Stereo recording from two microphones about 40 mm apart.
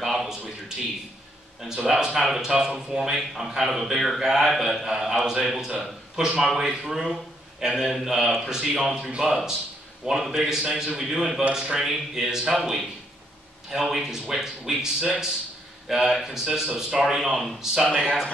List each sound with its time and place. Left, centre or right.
0.0 s a man's voice: centre
17.6 s a man's voice: centre